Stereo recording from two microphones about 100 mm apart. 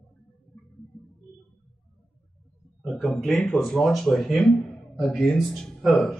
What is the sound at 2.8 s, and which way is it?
Speech, centre (ahead or behind).